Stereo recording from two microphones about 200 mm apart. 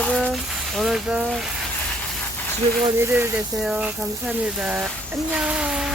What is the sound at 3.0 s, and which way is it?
Speech, 10° right (ahead or behind).